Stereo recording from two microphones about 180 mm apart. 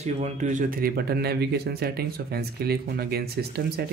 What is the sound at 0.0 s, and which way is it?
Speech, 40° right (ahead or behind).